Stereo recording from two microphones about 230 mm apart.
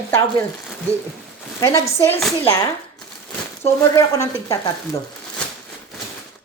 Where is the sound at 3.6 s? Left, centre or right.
Centre.